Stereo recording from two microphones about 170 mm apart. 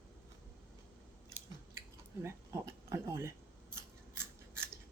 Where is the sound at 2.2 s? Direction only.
15° right (ahead or behind).